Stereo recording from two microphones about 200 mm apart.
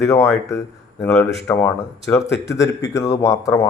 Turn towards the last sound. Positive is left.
turn(degrees=15)  # may be behind; listen again after turning